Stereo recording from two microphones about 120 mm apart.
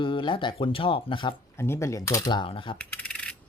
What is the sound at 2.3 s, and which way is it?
Speech, 45° left (ahead or behind).